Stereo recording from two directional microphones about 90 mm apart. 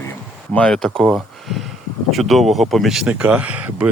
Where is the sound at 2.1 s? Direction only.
Centre (ahead or behind); by 3.8 s 15° right (ahead or behind).